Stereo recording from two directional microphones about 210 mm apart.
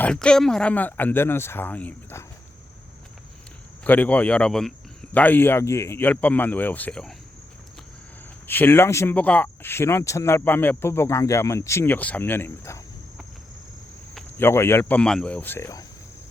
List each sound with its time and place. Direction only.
0.0 s speech: 5° left (ahead or behind)
3.8 s speech: 10° left (ahead or behind)
8.4 s speech: 10° left (ahead or behind)
14.3 s speech: 10° left (ahead or behind)